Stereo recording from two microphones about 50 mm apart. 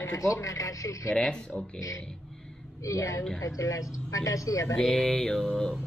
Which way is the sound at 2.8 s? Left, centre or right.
Left.